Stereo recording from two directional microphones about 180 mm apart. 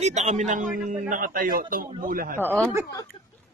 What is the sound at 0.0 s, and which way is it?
A man's voice, 40° right (ahead or behind).